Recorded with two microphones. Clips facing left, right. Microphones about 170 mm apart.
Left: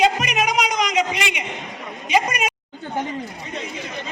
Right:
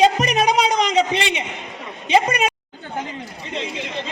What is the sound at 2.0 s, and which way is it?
Speech, 30° right (ahead or behind).